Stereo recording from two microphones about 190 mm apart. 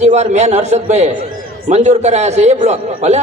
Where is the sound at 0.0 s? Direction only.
35° right (ahead or behind).